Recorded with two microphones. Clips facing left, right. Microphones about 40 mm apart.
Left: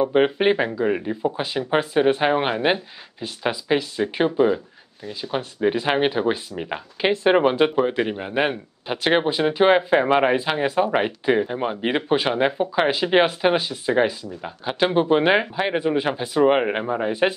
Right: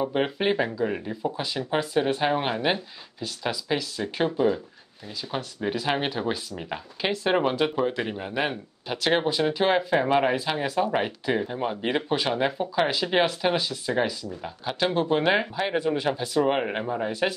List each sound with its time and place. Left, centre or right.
0.0 s speech: left